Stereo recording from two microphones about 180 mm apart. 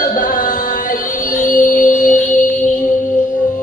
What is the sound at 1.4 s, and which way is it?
Music, 45° left (ahead or behind).